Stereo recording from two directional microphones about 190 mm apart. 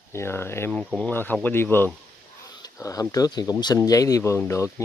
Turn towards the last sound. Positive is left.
turn(degrees=15)  # may be behind; listen again after turning